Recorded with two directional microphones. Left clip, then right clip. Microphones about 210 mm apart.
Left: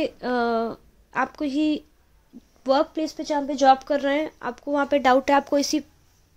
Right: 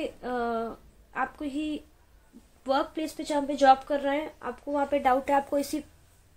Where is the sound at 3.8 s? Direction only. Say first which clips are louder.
Left 5 dB; 55° left (ahead or behind).